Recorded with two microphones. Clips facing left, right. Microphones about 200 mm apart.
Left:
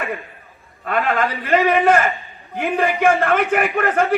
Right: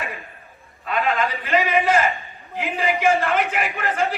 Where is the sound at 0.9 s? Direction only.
50° left (ahead or behind).